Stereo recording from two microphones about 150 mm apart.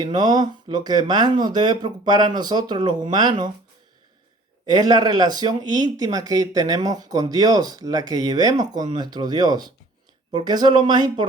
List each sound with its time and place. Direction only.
0.0 s speech: 25° right (ahead or behind)
4.6 s speech: 25° right (ahead or behind)